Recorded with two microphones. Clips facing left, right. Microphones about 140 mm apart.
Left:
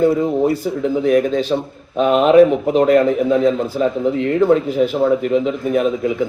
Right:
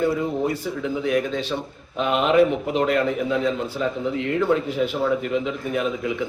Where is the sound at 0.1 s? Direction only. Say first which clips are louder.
Left 7 dB; 30° left (ahead or behind).